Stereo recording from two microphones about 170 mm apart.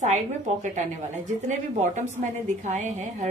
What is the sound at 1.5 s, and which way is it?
A woman's voice, 45° right (ahead or behind).